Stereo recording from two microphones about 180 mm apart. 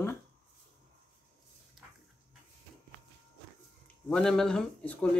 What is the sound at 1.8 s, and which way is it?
Dog, centre (ahead or behind).